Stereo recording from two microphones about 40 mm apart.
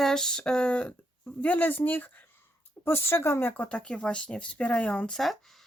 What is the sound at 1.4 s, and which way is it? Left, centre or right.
Speech, left.